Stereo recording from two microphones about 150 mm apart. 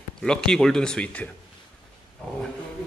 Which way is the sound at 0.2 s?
5° left (ahead or behind).